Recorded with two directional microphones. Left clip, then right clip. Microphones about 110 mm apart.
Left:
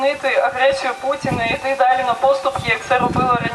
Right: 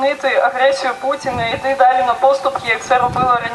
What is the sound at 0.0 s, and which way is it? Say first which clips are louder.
Speech: right 2 dB; 5° right (ahead or behind).